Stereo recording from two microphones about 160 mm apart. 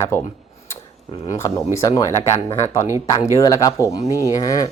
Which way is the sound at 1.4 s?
25° left (ahead or behind).